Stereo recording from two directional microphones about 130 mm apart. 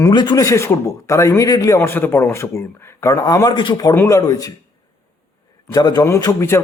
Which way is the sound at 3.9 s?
20° left (ahead or behind).